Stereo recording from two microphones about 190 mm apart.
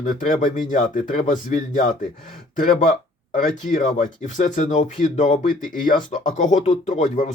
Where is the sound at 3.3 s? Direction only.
40° left (ahead or behind).